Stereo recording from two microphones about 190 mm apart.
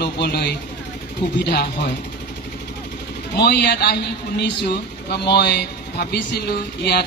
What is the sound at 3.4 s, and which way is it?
Speech, 60° left (ahead or behind).